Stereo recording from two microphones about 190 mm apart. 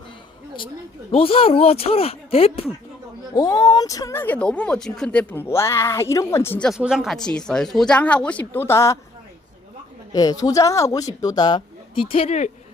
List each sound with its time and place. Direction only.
1.1 s speech: 30° left (ahead or behind)
3.3 s speech: 20° left (ahead or behind)
10.1 s speech: 20° left (ahead or behind)